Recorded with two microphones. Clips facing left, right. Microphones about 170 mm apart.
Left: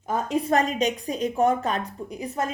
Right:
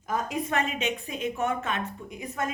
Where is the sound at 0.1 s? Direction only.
30° left (ahead or behind).